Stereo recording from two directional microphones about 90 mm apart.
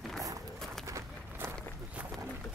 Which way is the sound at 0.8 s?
35° right (ahead or behind).